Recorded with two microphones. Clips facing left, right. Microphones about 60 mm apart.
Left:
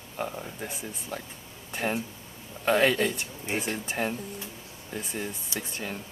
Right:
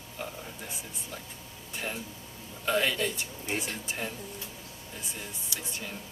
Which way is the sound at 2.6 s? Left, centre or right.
Left.